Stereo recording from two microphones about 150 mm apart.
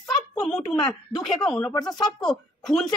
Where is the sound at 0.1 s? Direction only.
5° left (ahead or behind).